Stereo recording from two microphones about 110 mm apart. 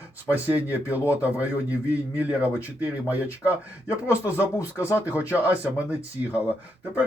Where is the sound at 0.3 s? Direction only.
15° right (ahead or behind).